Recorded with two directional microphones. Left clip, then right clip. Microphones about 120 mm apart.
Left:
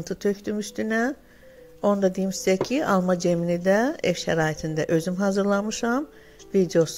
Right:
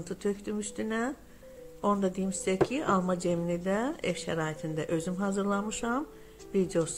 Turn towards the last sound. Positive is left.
turn(degrees=40)  # may be behind; listen again after turning